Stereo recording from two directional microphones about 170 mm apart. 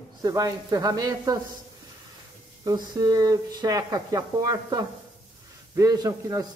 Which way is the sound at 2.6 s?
25° right (ahead or behind).